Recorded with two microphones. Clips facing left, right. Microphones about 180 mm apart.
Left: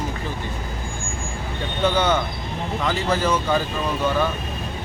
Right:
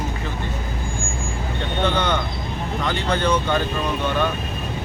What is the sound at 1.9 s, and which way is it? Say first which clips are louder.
Speech: left 2 dB; 5° left (ahead or behind).